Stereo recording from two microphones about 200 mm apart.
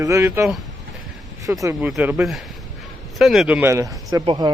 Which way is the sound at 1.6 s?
15° right (ahead or behind).